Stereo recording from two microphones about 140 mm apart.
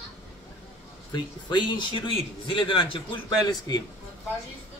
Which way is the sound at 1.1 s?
35° left (ahead or behind).